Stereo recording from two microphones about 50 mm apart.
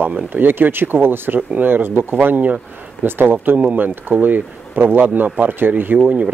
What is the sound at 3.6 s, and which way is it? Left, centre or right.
Speech, right.